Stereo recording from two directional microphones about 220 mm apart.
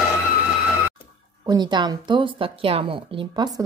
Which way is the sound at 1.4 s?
20° right (ahead or behind).